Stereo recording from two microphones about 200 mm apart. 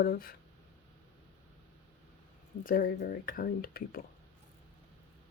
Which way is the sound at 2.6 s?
45° left (ahead or behind).